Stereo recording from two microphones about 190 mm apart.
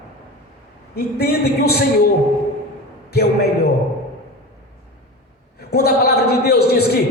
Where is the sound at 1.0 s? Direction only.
55° left (ahead or behind).